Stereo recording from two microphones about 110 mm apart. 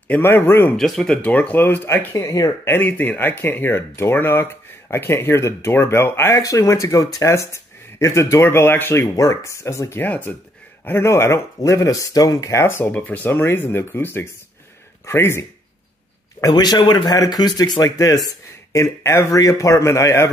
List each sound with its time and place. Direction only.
0.1 s speech: 20° left (ahead or behind)
0.7 s speech: centre (ahead or behind)
1.1 s speech: 15° left (ahead or behind); by 2.7 s 30° left (ahead or behind)
2.7 s speech: 20° left (ahead or behind)
16.3 s speech: 35° left (ahead or behind)